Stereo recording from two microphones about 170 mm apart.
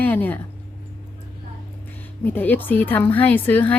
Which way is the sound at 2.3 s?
10° left (ahead or behind).